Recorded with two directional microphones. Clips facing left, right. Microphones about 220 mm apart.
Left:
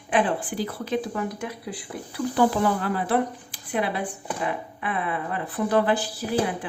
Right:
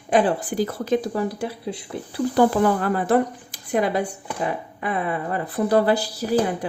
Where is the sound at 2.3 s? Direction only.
45° right (ahead or behind).